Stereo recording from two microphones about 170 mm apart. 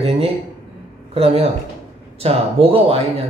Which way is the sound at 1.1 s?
35° right (ahead or behind).